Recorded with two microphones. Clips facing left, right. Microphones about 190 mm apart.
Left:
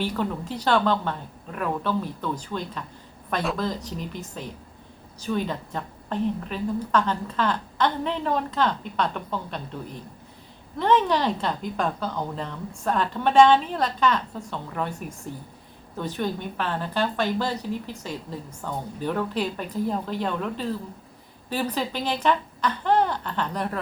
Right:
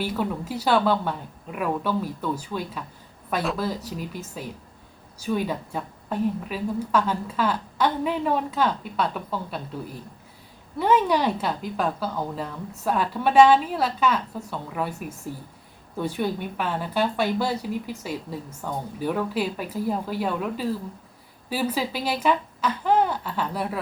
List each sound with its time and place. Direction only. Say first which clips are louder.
0.0 s a woman's voice: even; 5° right (ahead or behind)